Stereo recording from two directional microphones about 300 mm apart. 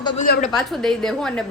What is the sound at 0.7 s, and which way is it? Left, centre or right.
Speech, centre.